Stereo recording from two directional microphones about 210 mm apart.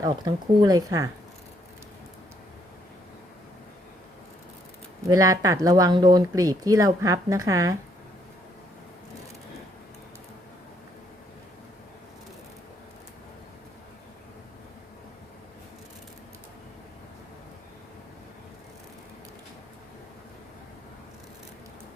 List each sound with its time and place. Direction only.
0.0 s speech: 20° right (ahead or behind)
5.0 s speech: 15° right (ahead or behind)